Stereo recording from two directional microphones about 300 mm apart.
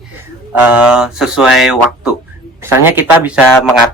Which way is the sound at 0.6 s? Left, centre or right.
Centre.